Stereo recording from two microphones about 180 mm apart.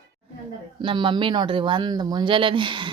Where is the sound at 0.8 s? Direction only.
25° right (ahead or behind).